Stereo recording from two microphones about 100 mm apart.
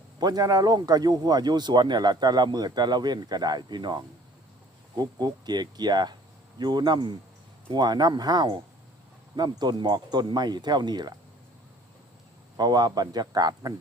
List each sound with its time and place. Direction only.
0.2 s speech: 40° right (ahead or behind)
12.5 s speech: 45° right (ahead or behind)